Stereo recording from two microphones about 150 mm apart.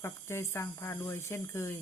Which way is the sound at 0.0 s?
15° left (ahead or behind).